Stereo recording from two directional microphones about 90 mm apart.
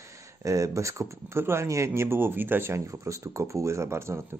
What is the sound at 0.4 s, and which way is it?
Speech, 35° right (ahead or behind).